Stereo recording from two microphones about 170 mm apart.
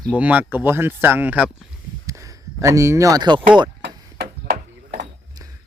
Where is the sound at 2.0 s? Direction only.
20° right (ahead or behind).